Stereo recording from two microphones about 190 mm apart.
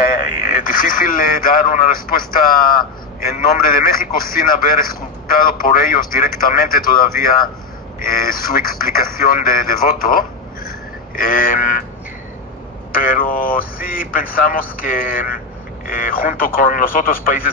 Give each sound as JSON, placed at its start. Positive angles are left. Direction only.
{"t": 0.5, "sound": "a man's voice", "side_deg": 45}
{"t": 12.9, "sound": "a man's voice", "side_deg": 50}